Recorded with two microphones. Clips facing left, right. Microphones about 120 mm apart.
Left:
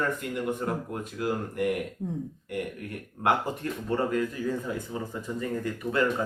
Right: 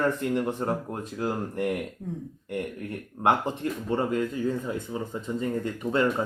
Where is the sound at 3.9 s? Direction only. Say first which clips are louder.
Even; 25° right (ahead or behind).